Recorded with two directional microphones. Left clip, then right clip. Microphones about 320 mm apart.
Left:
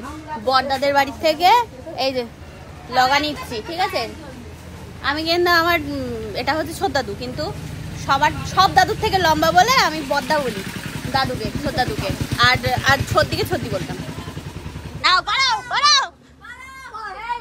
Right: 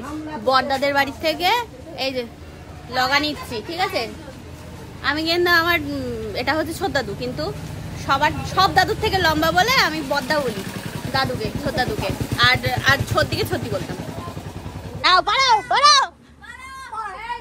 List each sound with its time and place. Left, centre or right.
0.5 s a woman's voice: centre
15.0 s speech: centre
15.2 s a woman's voice: centre